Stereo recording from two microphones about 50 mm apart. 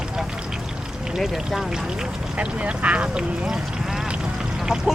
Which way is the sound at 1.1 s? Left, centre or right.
Centre.